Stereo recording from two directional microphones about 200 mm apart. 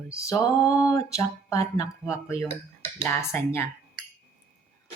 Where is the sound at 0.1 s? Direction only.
15° left (ahead or behind).